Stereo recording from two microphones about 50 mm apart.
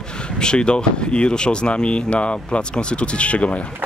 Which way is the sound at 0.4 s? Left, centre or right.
Centre.